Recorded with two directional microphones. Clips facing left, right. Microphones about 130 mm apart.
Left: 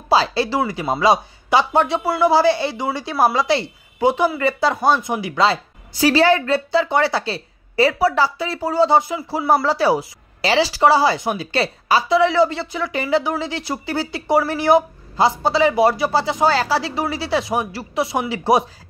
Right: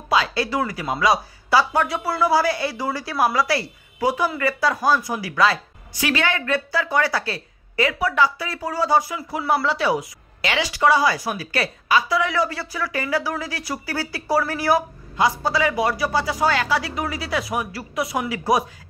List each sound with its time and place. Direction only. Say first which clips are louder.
0.1 s speech: left 4 dB; 30° left (ahead or behind)
9.5 s speech: left 4 dB; 40° left (ahead or behind)